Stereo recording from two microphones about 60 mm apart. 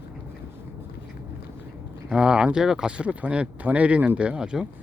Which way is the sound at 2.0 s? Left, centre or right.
Centre.